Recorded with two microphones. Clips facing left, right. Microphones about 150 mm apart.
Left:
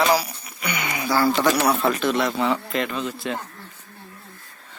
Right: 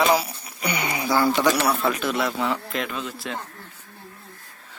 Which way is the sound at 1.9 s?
5° right (ahead or behind).